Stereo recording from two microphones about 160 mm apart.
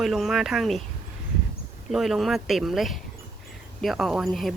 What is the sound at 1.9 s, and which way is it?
Speech, centre (ahead or behind).